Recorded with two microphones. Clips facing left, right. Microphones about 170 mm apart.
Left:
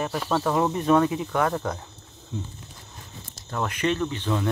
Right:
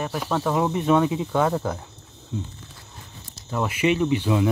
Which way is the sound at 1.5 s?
5° right (ahead or behind).